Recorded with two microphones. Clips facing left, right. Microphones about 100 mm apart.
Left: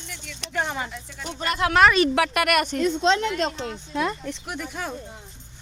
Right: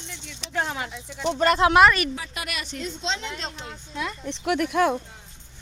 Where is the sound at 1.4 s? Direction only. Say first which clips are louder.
Right 6 dB; 40° right (ahead or behind).